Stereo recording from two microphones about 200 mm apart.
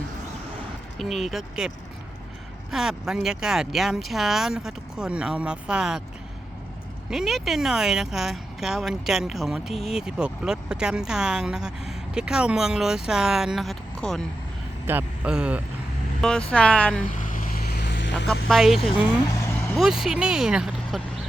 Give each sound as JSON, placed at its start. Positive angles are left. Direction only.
{"t": 0.9, "sound": "speech", "side_deg": 0}
{"t": 7.1, "sound": "speech", "side_deg": 0}
{"t": 14.8, "sound": "speech", "side_deg": -10}
{"t": 16.5, "sound": "speech", "side_deg": 5}
{"t": 17.0, "sound": "vehicle", "side_deg": 40}
{"t": 18.4, "sound": "speech", "side_deg": 0}
{"t": 19.2, "sound": "vehicle", "side_deg": 15}
{"t": 19.7, "sound": "speech", "side_deg": 0}